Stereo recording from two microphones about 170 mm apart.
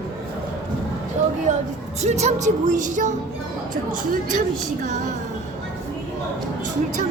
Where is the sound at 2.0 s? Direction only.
40° right (ahead or behind).